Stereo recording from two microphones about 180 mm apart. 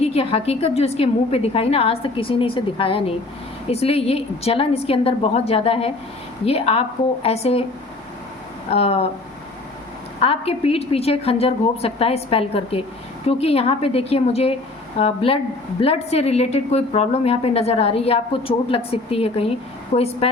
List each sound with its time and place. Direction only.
0.0 s a woman's voice: 35° left (ahead or behind)
8.7 s a woman's voice: 35° left (ahead or behind)
10.2 s a woman's voice: 35° left (ahead or behind)